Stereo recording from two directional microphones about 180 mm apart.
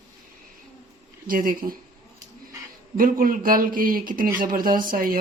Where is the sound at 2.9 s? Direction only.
50° right (ahead or behind).